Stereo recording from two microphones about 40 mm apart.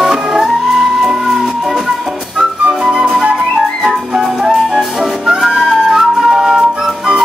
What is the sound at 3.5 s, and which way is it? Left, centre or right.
Music, centre.